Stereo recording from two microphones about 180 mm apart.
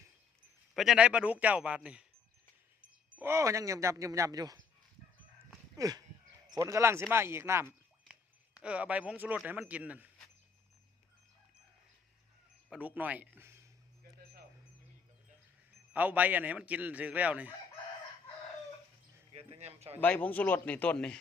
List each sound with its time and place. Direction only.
0.7 s a man's voice: centre (ahead or behind)
3.2 s a man's voice: 15° right (ahead or behind)
5.7 s a man's voice: 20° right (ahead or behind)
12.7 s a man's voice: 10° right (ahead or behind)
15.9 s a man's voice: 10° right (ahead or behind)
19.3 s speech: 35° right (ahead or behind)
20.0 s a man's voice: 10° left (ahead or behind)